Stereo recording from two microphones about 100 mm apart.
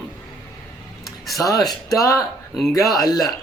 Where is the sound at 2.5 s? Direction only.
Centre (ahead or behind).